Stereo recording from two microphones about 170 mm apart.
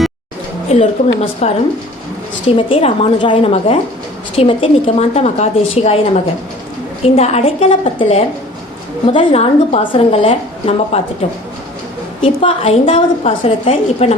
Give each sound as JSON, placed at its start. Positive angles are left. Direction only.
{"t": 0.7, "sound": "a woman's voice", "side_deg": 35}
{"t": 2.6, "sound": "a woman's voice", "side_deg": 30}
{"t": 7.0, "sound": "a woman's voice", "side_deg": 35}